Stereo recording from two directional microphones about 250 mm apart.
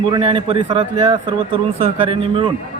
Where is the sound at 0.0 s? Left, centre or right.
Right.